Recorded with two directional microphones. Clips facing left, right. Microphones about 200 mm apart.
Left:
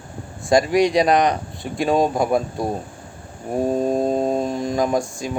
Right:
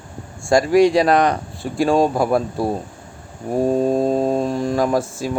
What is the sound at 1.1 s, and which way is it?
Speech, 15° left (ahead or behind).